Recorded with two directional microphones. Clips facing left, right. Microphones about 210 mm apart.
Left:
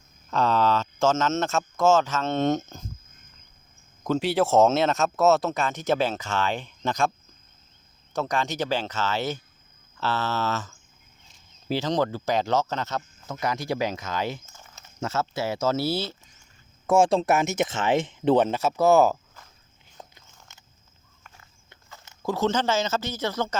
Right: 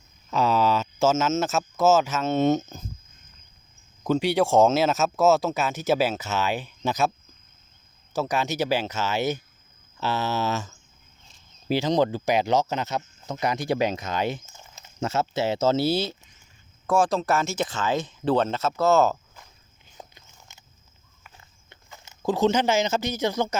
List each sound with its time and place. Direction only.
0.3 s speech: 10° right (ahead or behind)
4.0 s speech: centre (ahead or behind)
8.1 s speech: 5° right (ahead or behind)
16.8 s speech: 25° left (ahead or behind)
18.3 s speech: 15° left (ahead or behind)
20.0 s biting: 15° right (ahead or behind)
21.3 s a sound: 20° right (ahead or behind)